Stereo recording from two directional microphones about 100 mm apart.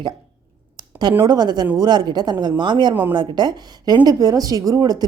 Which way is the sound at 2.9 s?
20° right (ahead or behind).